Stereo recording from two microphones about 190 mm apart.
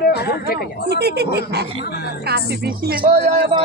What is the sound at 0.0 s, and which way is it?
Speech, 55° left (ahead or behind).